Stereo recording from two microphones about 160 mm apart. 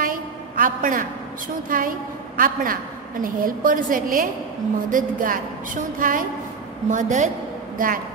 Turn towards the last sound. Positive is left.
turn(degrees=-60)  # may be behind; listen again after turning